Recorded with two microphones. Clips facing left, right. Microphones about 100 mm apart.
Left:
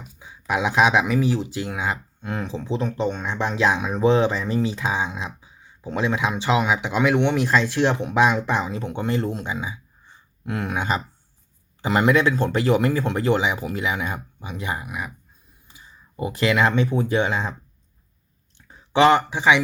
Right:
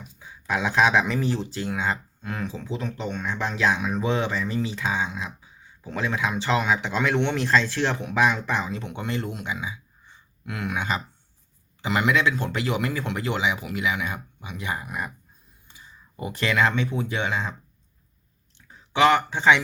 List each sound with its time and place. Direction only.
0.2 s speech: 15° left (ahead or behind)
2.3 s speech: 25° left (ahead or behind)
3.2 s speech: 20° left (ahead or behind)
14.8 s speech: 5° left (ahead or behind)
15.6 s a sound: 20° left (ahead or behind)
16.5 s speech: 20° left (ahead or behind)
16.9 s speech: 40° left (ahead or behind)
18.9 s speech: 30° left (ahead or behind)
19.3 s speech: 10° left (ahead or behind)